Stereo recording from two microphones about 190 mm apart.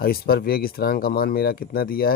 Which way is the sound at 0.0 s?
50° left (ahead or behind).